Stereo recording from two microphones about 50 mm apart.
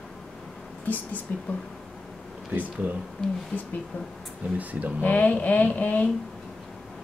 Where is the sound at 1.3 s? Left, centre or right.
Left.